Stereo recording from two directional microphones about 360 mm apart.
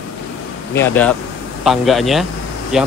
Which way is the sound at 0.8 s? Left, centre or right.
Centre.